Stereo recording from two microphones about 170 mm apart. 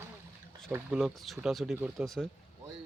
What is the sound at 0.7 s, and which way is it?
Speech, 5° right (ahead or behind).